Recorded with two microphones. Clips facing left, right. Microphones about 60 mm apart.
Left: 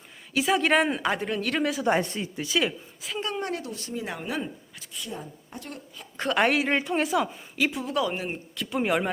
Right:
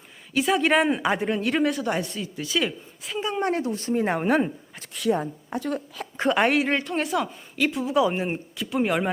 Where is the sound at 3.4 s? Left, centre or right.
Right.